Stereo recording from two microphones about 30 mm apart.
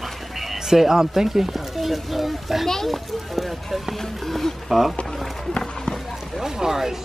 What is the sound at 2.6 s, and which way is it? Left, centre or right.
Speech, centre.